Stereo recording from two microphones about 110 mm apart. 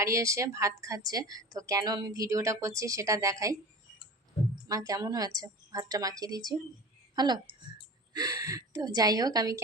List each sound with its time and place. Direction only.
0.0 s a woman's voice: 25° right (ahead or behind)
4.7 s a woman's voice: 35° right (ahead or behind)